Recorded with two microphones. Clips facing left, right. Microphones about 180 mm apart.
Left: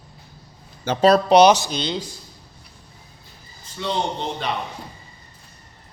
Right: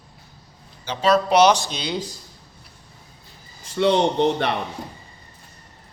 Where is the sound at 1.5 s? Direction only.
Centre (ahead or behind).